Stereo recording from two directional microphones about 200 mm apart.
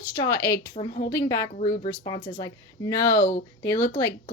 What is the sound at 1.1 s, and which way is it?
Speech, 15° left (ahead or behind).